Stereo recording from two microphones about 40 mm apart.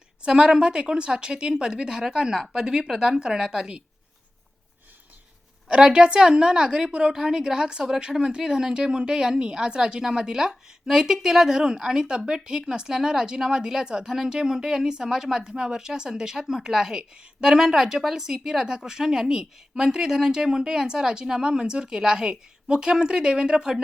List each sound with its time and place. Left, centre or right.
0.2 s speech: right
5.6 s speech: right